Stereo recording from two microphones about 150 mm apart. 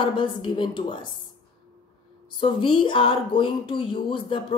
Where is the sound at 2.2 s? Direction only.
35° left (ahead or behind).